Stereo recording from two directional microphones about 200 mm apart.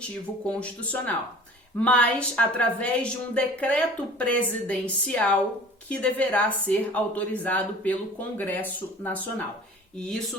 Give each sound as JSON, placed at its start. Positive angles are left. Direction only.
{"t": 0.1, "sound": "a woman's voice", "side_deg": 5}